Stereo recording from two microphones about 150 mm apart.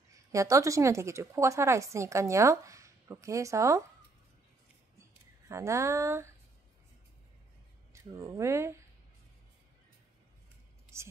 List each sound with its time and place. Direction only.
0.1 s a woman's voice: 20° right (ahead or behind)
5.5 s a woman's voice: 20° right (ahead or behind)
7.9 s speech: 20° right (ahead or behind)